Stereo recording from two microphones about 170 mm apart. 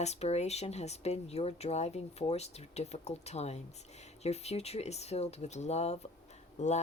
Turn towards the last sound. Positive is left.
turn(degrees=40)  # may be behind; listen again after turning